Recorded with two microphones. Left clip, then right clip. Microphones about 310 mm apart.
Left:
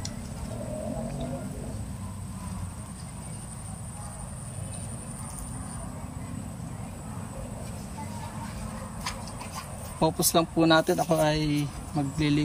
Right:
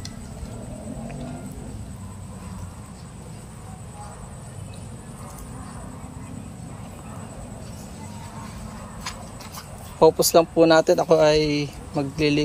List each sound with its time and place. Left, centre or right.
9.9 s speech: centre